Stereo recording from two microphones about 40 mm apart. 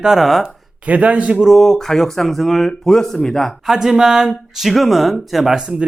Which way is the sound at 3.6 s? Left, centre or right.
Centre.